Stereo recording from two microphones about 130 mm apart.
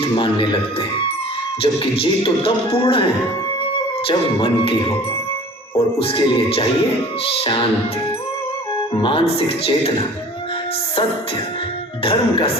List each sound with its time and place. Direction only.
0.2 s speech: 45° left (ahead or behind)
4.1 s speech: 45° left (ahead or behind)
5.7 s speech: 45° left (ahead or behind)
9.0 s speech: 45° left (ahead or behind)
12.0 s speech: 45° left (ahead or behind)